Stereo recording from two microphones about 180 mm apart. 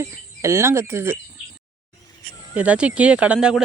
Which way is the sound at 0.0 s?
15° right (ahead or behind).